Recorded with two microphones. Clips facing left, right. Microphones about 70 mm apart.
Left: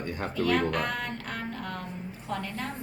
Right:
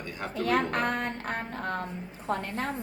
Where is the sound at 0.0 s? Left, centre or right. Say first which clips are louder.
Left 3 dB; left.